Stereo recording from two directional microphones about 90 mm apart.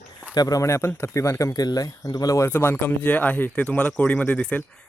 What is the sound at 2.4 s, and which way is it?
Speech, 20° left (ahead or behind).